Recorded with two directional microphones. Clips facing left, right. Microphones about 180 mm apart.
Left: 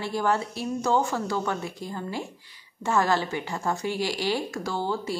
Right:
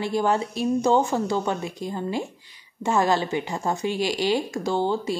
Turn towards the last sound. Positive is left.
turn(degrees=-20)  # may be behind; listen again after turning